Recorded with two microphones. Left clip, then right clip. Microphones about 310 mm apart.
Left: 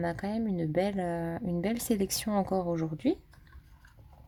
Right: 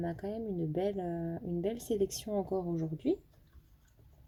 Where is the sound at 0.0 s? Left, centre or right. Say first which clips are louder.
Left 5 dB; left.